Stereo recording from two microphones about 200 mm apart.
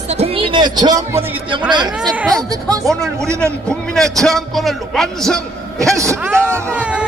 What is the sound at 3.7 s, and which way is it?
A man's voice, 5° left (ahead or behind).